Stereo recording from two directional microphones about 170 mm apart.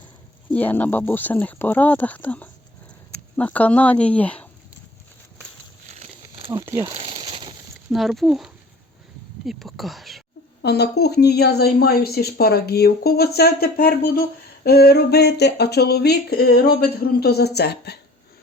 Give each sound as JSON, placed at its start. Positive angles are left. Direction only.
{"t": 0.5, "sound": "speech", "side_deg": 10}
{"t": 6.2, "sound": "crumpling", "side_deg": -30}
{"t": 6.8, "sound": "a sound", "side_deg": -30}
{"t": 7.9, "sound": "speech", "side_deg": 0}
{"t": 10.6, "sound": "speech", "side_deg": 75}